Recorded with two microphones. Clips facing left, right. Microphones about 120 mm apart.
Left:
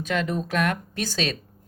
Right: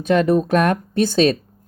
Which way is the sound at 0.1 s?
40° right (ahead or behind).